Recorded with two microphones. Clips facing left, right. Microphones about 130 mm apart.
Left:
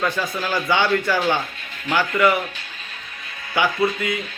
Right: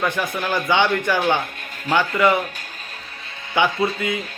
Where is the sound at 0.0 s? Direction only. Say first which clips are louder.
Right 1 dB; 15° right (ahead or behind).